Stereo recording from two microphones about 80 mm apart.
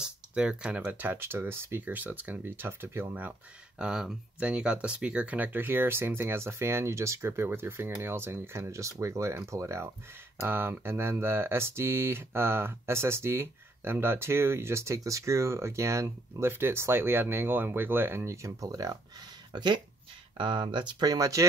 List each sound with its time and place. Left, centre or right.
0.0 s speech: centre
3.7 s speech: centre; by 18.9 s right
19.5 s speech: right
20.3 s speech: right